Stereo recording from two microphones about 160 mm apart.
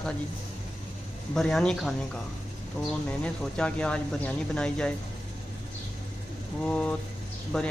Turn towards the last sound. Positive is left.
turn(degrees=5)  # may be behind; listen again after turning